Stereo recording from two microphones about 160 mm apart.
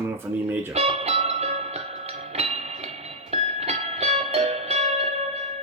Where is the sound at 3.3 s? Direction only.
40° right (ahead or behind).